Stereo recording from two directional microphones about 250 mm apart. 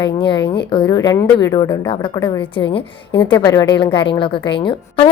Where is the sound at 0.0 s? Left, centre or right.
Centre.